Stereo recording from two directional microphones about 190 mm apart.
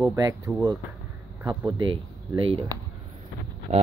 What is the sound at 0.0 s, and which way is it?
Speech, 15° right (ahead or behind).